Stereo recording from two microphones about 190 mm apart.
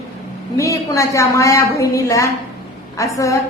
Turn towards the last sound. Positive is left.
turn(degrees=15)  # may be behind; listen again after turning